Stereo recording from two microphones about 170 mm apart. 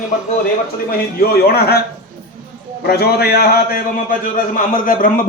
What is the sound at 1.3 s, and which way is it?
Speech, 65° left (ahead or behind).